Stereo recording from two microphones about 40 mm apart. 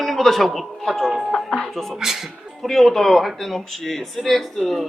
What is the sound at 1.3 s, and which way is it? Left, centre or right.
Speech, centre.